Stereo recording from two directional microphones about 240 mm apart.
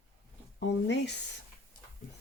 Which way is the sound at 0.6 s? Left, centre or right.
Left.